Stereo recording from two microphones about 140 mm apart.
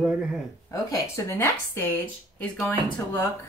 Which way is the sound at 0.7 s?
20° left (ahead or behind).